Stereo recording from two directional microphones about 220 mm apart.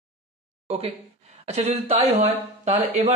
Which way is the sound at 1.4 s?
30° right (ahead or behind).